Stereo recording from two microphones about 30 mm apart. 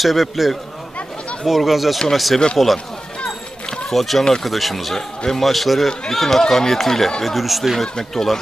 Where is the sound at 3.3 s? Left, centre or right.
Left.